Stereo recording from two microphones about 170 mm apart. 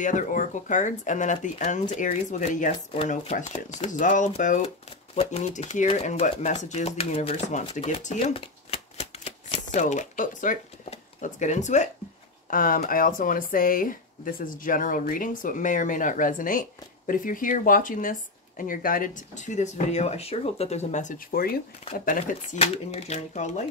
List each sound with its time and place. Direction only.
0.0 s speech: 50° left (ahead or behind)
2.9 s speech: 35° left (ahead or behind)
7.7 s shuffling cards: 45° left (ahead or behind)
12.4 s speech: 55° left (ahead or behind)